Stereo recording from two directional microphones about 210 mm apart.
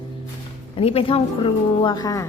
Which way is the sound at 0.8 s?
25° left (ahead or behind).